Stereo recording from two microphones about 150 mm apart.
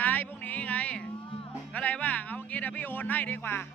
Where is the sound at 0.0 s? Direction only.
10° left (ahead or behind).